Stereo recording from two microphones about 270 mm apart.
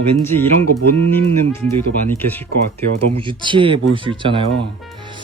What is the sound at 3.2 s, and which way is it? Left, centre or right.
Speech, centre.